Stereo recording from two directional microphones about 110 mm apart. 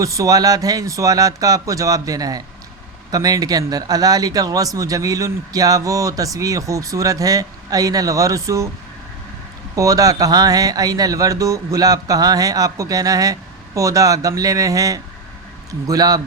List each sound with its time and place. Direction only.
0.0 s speech: 30° right (ahead or behind)
9.7 s speech: 30° right (ahead or behind)